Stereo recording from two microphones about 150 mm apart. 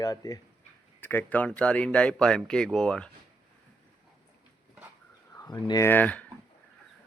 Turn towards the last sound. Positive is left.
turn(degrees=10)  # may be behind; listen again after turning